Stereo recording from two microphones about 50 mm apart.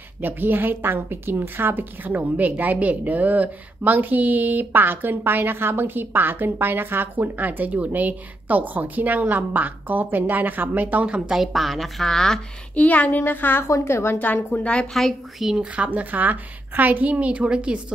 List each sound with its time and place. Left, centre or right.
0.2 s a woman's voice: right
11.1 s speech: centre
11.4 s speech: centre
12.7 s speech: left
13.7 s a woman's voice: left
14.2 s speech: left
14.6 s a woman's voice: left
15.5 s a woman's voice: right